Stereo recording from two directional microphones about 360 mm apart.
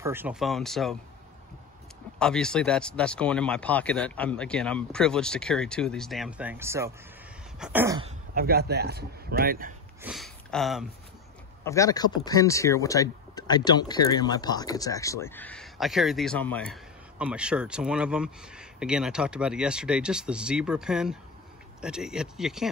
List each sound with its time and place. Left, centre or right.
0.0 s speech: centre
2.1 s speech: centre
7.5 s a sound: centre
8.4 s speech: right
10.0 s speech: centre